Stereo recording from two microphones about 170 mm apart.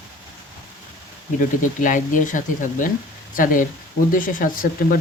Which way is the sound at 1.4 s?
50° left (ahead or behind).